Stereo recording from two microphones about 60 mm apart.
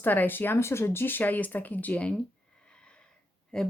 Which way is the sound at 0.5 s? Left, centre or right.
Left.